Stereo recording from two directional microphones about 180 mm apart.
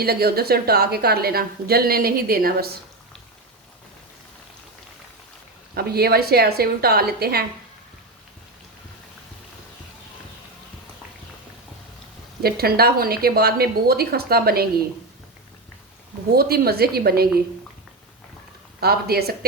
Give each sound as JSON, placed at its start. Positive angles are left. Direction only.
{"t": 0.0, "sound": "a woman's voice", "side_deg": -60}
{"t": 5.7, "sound": "a woman's voice", "side_deg": -60}
{"t": 12.4, "sound": "a woman's voice", "side_deg": -60}
{"t": 16.3, "sound": "a woman's voice", "side_deg": -60}
{"t": 18.8, "sound": "a woman's voice", "side_deg": -60}